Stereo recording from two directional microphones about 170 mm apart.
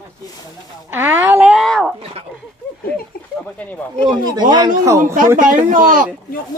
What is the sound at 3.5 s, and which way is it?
Speech, 10° left (ahead or behind).